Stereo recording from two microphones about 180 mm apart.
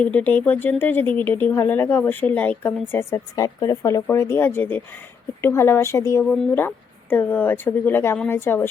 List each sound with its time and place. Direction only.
0.0 s speech: 10° left (ahead or behind)